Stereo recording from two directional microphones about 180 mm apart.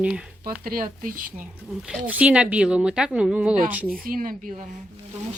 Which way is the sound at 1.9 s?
5° right (ahead or behind).